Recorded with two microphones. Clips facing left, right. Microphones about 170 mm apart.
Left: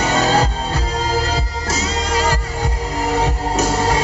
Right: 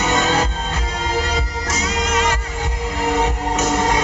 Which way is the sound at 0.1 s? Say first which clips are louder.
Left 3 dB; 35° left (ahead or behind).